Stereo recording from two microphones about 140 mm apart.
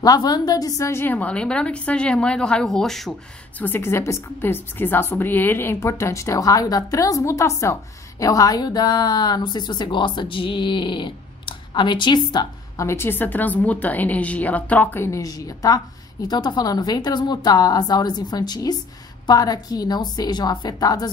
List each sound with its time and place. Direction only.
0.0 s a woman's voice: 30° left (ahead or behind); by 3.2 s 5° left (ahead or behind)
3.5 s a woman's voice: 15° left (ahead or behind)